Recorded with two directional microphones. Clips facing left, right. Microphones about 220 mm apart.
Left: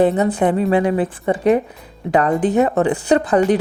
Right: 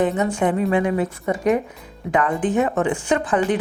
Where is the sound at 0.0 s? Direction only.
35° left (ahead or behind).